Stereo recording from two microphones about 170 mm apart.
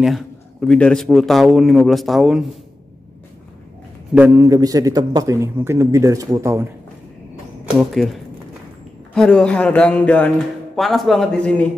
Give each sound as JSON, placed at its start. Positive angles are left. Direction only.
{"t": 0.0, "sound": "a man's voice", "side_deg": 0}
{"t": 4.1, "sound": "a man's voice", "side_deg": -10}
{"t": 7.7, "sound": "a man's voice", "side_deg": 0}